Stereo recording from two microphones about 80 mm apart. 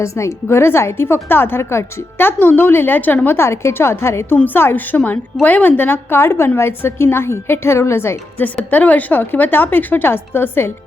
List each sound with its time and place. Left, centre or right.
0.0 s a woman's voice: left
4.4 s a woman's voice: left
8.7 s a woman's voice: left